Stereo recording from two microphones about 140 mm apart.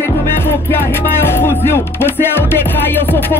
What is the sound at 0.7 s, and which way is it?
Music, 15° left (ahead or behind).